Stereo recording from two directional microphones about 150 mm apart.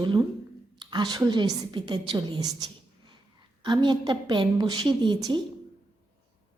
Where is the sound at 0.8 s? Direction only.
30° right (ahead or behind).